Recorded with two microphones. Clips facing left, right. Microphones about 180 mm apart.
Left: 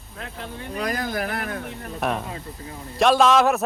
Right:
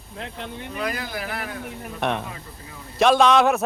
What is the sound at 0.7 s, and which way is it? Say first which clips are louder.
Speech: left 3 dB; 40° left (ahead or behind).